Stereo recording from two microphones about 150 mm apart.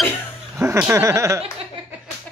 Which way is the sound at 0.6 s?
15° right (ahead or behind).